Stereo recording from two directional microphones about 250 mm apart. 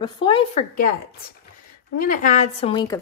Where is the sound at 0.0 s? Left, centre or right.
Left.